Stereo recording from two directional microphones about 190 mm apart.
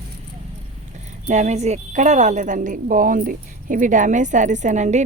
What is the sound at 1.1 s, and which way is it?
A woman's voice, 40° right (ahead or behind).